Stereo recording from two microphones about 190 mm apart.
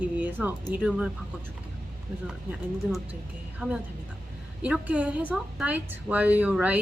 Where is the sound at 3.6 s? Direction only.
10° right (ahead or behind).